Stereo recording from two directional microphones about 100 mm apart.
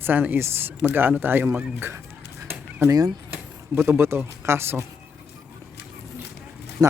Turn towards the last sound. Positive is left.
turn(degrees=-35)  # may be behind; listen again after turning